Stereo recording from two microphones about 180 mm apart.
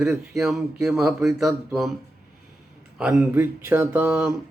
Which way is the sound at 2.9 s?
5° right (ahead or behind).